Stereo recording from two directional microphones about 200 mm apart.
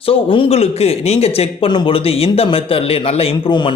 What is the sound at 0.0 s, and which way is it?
A man's voice, 25° left (ahead or behind).